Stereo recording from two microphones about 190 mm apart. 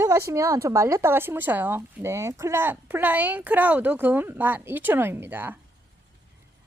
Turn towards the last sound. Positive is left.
turn(degrees=-10)  # may be behind; listen again after turning